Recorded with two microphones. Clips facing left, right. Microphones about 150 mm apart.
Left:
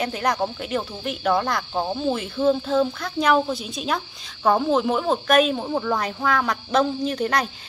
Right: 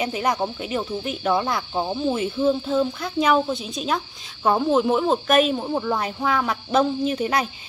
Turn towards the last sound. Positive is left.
turn(degrees=-5)  # may be behind; listen again after turning